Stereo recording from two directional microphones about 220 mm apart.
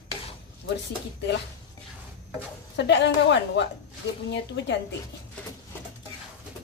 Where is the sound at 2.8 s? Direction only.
50° left (ahead or behind).